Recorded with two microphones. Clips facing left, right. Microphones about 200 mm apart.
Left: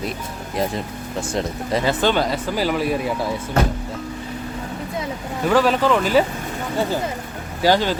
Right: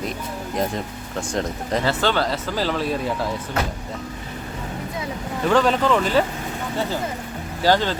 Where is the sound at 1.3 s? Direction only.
5° left (ahead or behind).